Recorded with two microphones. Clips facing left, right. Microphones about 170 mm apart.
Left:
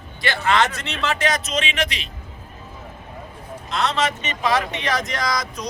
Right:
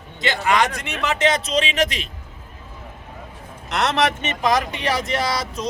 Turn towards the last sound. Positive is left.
turn(degrees=-30)  # may be behind; listen again after turning